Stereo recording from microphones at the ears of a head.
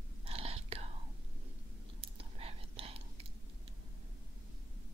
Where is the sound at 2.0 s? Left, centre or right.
Right.